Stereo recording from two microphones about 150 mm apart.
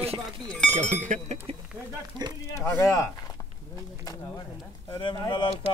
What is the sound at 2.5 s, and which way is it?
Speech, 15° left (ahead or behind).